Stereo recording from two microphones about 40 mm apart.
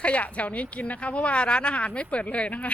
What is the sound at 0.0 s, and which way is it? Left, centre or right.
A woman's voice, left.